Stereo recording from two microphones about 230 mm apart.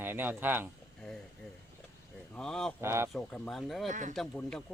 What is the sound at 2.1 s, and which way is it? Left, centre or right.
Speech, centre.